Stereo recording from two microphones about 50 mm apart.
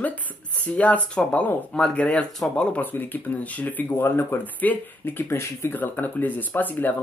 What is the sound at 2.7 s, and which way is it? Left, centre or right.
Speech, left.